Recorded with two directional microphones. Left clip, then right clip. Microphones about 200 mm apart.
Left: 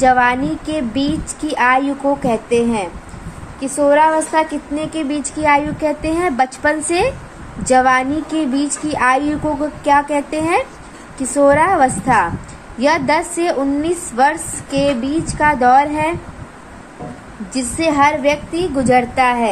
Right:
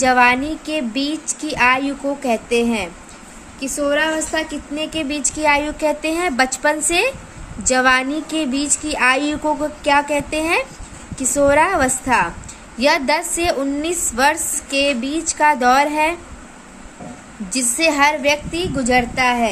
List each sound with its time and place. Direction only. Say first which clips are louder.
0.0 s speech: left 1 dB; 25° right (ahead or behind)
17.5 s speech: even; 30° right (ahead or behind)